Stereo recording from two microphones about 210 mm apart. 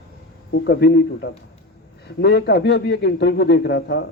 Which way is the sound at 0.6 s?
50° left (ahead or behind).